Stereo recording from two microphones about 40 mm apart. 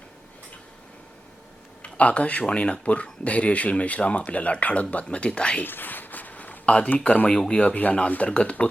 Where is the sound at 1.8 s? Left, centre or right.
Left.